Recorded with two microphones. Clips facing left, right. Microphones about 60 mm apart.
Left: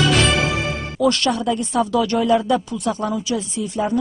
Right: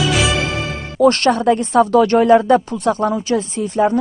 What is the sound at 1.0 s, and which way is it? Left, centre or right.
Speech, right.